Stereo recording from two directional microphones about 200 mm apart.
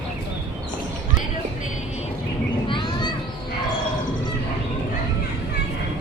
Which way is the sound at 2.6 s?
25° left (ahead or behind).